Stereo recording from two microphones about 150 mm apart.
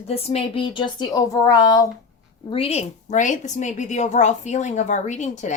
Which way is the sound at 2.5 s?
40° left (ahead or behind).